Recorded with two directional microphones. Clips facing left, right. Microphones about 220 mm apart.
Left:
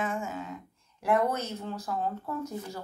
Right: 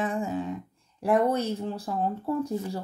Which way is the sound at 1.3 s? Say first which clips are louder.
Right 6 dB; 30° right (ahead or behind).